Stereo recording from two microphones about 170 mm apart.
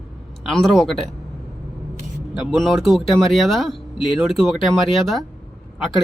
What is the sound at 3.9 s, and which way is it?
Speech, 30° left (ahead or behind).